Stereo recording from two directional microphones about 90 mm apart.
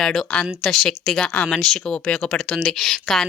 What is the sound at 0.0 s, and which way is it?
Speech, 5° left (ahead or behind).